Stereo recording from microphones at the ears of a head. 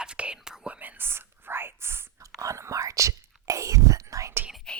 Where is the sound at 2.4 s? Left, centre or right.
Right.